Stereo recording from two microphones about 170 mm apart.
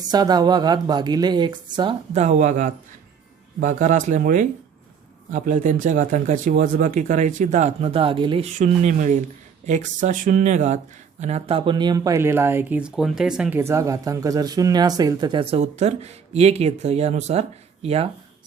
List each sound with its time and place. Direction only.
0.0 s speech: 25° right (ahead or behind)
2.1 s speech: 45° right (ahead or behind)